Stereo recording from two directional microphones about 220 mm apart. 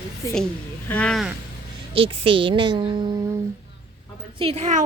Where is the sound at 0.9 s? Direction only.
5° left (ahead or behind).